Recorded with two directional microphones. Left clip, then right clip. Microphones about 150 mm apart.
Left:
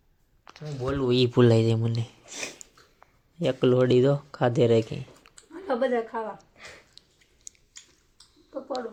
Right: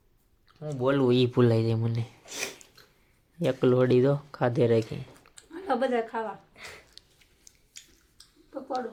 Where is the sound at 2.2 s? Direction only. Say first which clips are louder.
Right 2 dB; 90° right.